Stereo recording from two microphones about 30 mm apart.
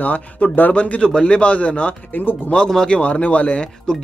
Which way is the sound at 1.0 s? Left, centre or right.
Left.